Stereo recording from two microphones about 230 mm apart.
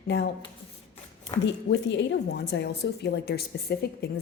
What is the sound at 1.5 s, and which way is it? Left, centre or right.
A woman's voice, left.